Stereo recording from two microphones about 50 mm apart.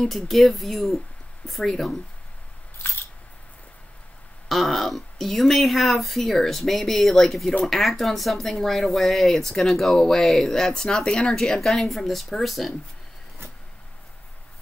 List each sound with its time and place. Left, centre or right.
0.0 s speech: centre
4.5 s speech: centre